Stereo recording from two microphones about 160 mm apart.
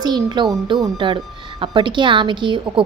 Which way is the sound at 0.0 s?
25° right (ahead or behind).